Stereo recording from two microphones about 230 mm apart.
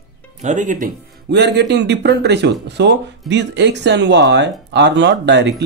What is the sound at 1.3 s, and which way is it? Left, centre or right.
Speech, right.